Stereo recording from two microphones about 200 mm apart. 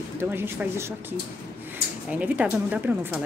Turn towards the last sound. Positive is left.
turn(degrees=-10)  # may be behind; listen again after turning